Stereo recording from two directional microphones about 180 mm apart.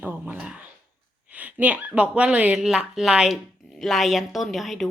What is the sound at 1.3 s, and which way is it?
Speech, 10° right (ahead or behind).